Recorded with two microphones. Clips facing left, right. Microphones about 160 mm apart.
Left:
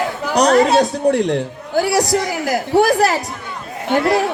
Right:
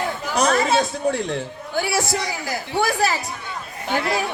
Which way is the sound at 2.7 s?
40° left (ahead or behind).